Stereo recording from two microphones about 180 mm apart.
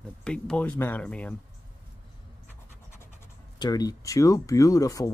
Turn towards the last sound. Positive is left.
turn(degrees=20)  # may be behind; listen again after turning